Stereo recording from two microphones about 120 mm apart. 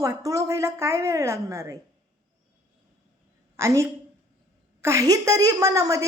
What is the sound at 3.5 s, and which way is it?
A woman's voice, 25° right (ahead or behind).